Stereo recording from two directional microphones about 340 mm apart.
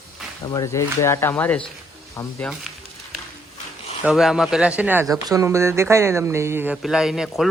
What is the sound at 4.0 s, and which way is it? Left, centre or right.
Speech, centre.